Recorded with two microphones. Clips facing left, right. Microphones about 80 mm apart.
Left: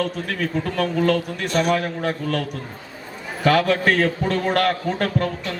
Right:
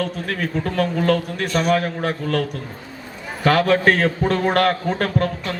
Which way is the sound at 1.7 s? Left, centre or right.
Right.